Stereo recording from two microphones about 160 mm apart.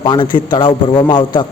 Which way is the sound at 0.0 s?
30° left (ahead or behind).